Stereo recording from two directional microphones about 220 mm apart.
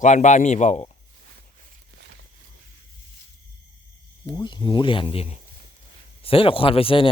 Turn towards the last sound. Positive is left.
turn(degrees=25)  # may be behind; listen again after turning